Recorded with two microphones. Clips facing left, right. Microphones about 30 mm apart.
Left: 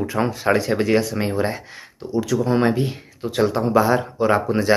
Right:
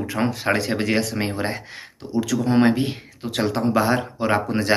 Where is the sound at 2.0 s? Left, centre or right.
Right.